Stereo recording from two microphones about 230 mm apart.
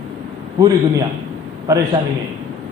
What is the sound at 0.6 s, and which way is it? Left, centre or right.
A man's voice, centre.